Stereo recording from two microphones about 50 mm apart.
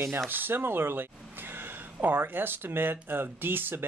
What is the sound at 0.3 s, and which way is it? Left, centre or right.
Speech, right.